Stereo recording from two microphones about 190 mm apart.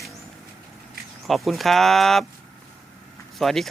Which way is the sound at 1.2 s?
Centre (ahead or behind).